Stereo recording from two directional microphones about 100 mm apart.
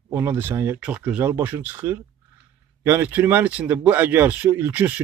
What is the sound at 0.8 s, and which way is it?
A man's voice, 10° right (ahead or behind).